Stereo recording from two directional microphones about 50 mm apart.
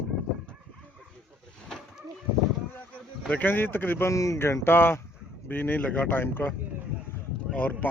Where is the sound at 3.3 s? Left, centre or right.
Left.